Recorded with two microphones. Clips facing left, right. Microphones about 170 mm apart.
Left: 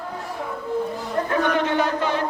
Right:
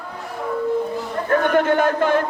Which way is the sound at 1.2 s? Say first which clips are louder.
Right 6 dB; 50° right (ahead or behind).